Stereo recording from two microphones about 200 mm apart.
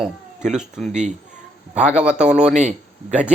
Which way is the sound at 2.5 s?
35° right (ahead or behind).